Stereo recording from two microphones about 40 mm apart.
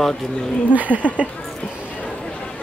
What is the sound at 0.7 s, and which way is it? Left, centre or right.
Speech, right.